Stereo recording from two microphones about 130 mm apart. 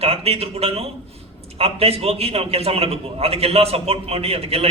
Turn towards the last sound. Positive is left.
turn(degrees=-50)  # may be behind; listen again after turning